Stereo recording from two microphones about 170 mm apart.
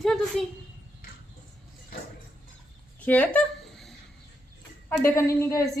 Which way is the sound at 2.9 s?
10° left (ahead or behind).